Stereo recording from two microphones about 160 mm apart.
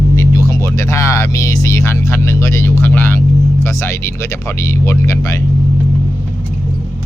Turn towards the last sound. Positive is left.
turn(degrees=20)  # may be behind; listen again after turning